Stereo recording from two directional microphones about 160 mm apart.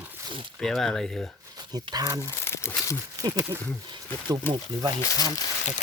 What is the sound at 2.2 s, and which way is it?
Speech, 15° left (ahead or behind).